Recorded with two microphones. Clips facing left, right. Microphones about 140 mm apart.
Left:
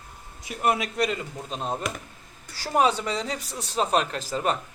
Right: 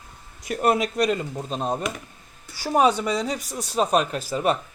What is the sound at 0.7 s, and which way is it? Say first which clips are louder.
Speech: right 3 dB; 20° right (ahead or behind).